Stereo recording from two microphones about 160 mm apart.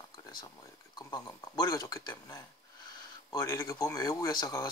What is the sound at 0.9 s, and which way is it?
Speech, 25° left (ahead or behind).